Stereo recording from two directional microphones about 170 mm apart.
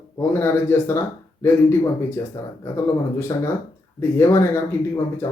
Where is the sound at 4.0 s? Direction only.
15° left (ahead or behind).